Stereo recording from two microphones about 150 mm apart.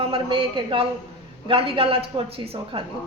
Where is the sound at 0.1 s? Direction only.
35° right (ahead or behind).